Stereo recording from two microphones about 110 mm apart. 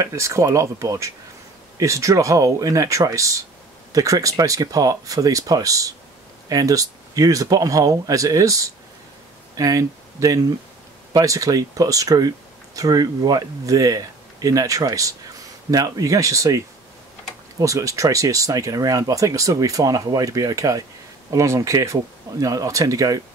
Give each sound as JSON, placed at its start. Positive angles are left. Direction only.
{"t": 0.0, "sound": "speech", "side_deg": -30}